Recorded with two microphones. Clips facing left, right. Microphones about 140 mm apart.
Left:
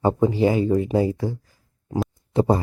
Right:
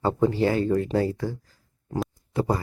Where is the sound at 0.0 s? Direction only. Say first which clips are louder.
Left 3 dB; 15° left (ahead or behind).